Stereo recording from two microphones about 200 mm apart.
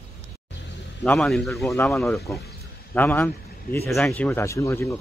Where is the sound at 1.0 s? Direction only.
Centre (ahead or behind).